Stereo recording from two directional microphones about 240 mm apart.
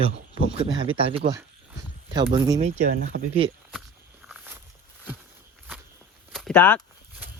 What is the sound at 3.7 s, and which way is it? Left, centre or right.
Walk, centre.